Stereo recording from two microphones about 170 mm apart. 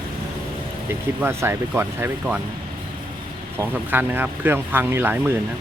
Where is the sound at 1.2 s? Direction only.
15° right (ahead or behind).